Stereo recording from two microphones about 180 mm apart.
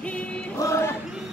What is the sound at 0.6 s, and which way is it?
Choir, 15° left (ahead or behind).